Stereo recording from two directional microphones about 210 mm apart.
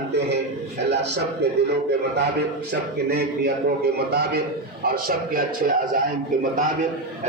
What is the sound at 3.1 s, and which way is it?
A man's voice, 50° right (ahead or behind).